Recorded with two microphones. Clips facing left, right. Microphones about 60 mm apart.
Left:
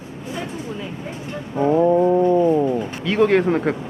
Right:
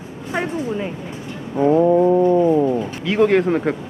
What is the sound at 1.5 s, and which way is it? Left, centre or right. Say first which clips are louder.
Speech: right 2 dB; centre.